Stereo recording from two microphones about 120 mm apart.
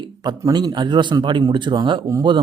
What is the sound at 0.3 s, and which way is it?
Speech, 35° right (ahead or behind).